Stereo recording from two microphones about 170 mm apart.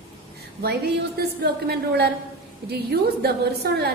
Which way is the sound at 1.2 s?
65° right (ahead or behind).